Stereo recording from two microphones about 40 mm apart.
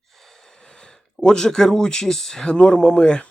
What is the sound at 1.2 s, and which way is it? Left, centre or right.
Speech, centre.